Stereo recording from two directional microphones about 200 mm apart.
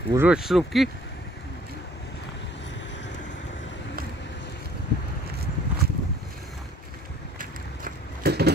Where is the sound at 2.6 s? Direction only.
65° left (ahead or behind).